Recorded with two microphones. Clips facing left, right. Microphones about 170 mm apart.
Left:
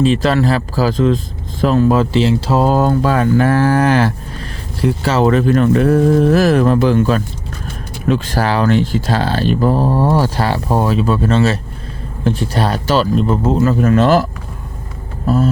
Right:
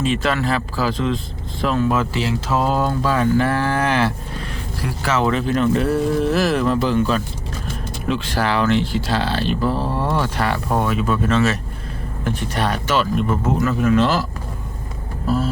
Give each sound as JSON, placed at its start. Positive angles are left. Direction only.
{"t": 0.0, "sound": "speech", "side_deg": 35}
{"t": 4.8, "sound": "speech", "side_deg": 30}
{"t": 13.8, "sound": "speech", "side_deg": 45}